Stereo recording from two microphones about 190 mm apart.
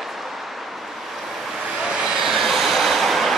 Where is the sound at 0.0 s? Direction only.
Centre (ahead or behind).